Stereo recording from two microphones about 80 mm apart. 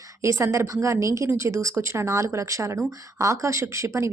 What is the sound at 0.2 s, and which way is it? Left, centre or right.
A woman's voice, right.